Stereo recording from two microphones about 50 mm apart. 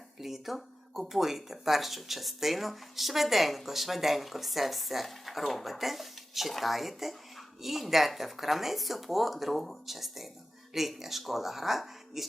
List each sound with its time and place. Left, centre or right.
0.2 s speech: centre